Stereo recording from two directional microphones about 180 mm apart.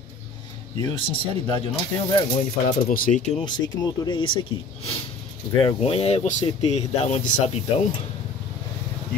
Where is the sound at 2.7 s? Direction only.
45° left (ahead or behind).